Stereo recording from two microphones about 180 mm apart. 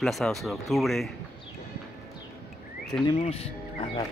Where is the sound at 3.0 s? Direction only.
30° left (ahead or behind).